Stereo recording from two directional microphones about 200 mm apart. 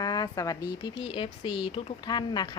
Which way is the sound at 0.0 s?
20° left (ahead or behind).